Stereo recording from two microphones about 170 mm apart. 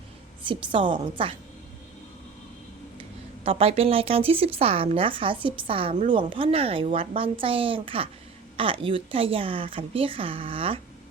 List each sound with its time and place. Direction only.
0.4 s a woman's voice: 30° right (ahead or behind)
3.4 s speech: 35° right (ahead or behind)